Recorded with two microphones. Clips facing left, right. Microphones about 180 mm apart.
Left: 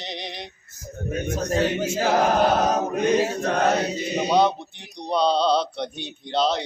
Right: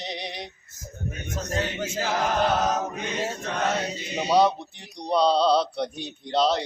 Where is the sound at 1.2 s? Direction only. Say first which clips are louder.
Left 7 dB; 55° left (ahead or behind).